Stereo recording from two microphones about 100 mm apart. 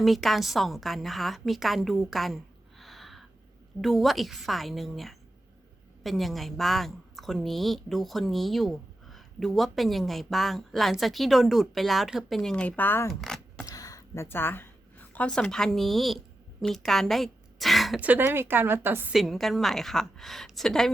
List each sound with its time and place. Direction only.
0.0 s a woman's voice: centre (ahead or behind); by 13.1 s 20° left (ahead or behind)
13.1 s vehicle: 5° left (ahead or behind)
13.7 s a sound: 35° left (ahead or behind)
14.3 s a woman's voice: 20° left (ahead or behind); by 18.0 s centre (ahead or behind)
18.0 s a woman's voice: 20° right (ahead or behind)
19.1 s a woman's voice: centre (ahead or behind)